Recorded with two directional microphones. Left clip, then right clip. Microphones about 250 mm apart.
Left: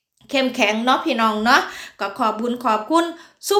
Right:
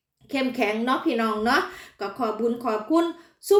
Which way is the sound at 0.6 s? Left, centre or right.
Centre.